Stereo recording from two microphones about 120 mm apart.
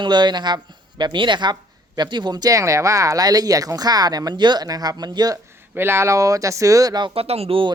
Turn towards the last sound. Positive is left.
turn(degrees=-50)  # may be behind; listen again after turning